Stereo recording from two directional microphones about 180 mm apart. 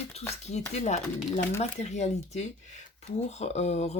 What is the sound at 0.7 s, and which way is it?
Speech, 40° left (ahead or behind).